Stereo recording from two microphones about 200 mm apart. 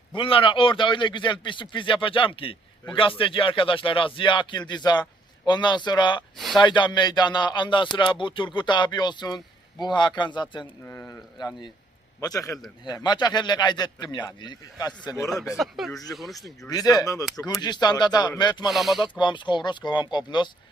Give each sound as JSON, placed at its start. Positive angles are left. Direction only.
{"t": 0.1, "sound": "a man's voice", "side_deg": 25}
{"t": 6.3, "sound": "speech", "side_deg": 0}
{"t": 6.6, "sound": "a man's voice", "side_deg": 25}
{"t": 15.5, "sound": "speech", "side_deg": 0}
{"t": 16.3, "sound": "a man's voice", "side_deg": 20}
{"t": 18.7, "sound": "speech", "side_deg": 0}
{"t": 18.9, "sound": "a man's voice", "side_deg": 25}